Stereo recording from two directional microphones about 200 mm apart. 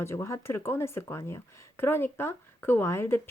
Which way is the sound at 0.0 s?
15° left (ahead or behind).